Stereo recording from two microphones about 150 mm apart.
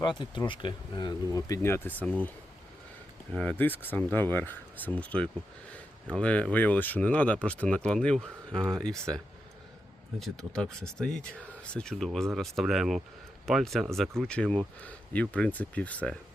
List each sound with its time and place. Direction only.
0.0 s speech: 30° left (ahead or behind); by 2.1 s 10° left (ahead or behind)
3.3 s speech: 10° left (ahead or behind)